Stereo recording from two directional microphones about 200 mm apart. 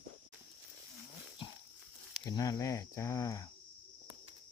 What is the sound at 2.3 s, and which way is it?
Speech, 15° left (ahead or behind).